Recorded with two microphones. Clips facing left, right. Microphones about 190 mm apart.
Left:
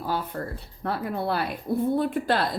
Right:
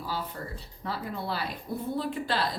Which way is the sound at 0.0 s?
55° left (ahead or behind).